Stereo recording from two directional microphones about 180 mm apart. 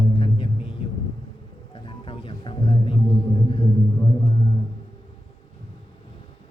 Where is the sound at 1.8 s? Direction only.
30° left (ahead or behind).